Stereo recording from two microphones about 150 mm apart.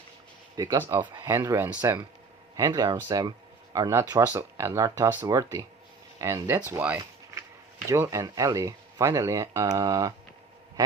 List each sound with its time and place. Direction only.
0.5 s speech: 25° right (ahead or behind)
2.6 s speech: 25° right (ahead or behind)